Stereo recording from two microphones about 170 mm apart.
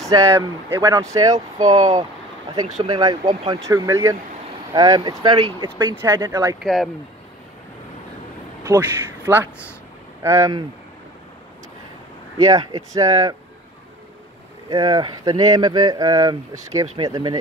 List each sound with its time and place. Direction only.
0.0 s speech: 20° right (ahead or behind)
2.5 s speech: 25° right (ahead or behind)
6.6 s speech: centre (ahead or behind)
8.6 s speech: 15° right (ahead or behind)
12.4 s speech: 20° right (ahead or behind)
14.7 s speech: 25° right (ahead or behind)